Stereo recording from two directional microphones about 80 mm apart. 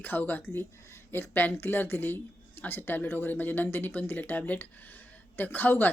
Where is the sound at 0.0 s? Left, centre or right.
Left.